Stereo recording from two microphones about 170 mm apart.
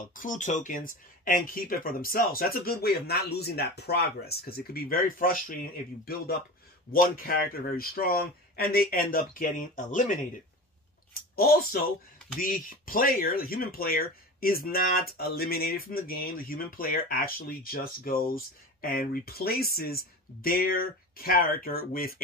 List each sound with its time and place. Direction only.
0.0 s speech: 50° left (ahead or behind)
11.1 s speech: 60° left (ahead or behind)